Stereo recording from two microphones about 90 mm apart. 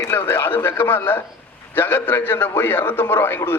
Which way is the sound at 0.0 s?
25° left (ahead or behind).